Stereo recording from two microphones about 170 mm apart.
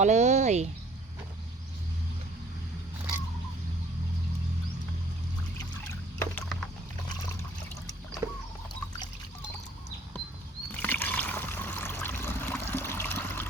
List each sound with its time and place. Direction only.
0.0 s speech: 45° right (ahead or behind)
5.9 s rowboat: 15° left (ahead or behind)
10.8 s water: 10° left (ahead or behind)